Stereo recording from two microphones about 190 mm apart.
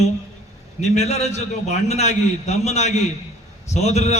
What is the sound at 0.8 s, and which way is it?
A man's voice, 35° left (ahead or behind).